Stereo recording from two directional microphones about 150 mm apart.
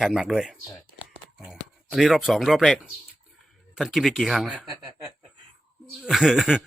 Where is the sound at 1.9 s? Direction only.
Centre (ahead or behind).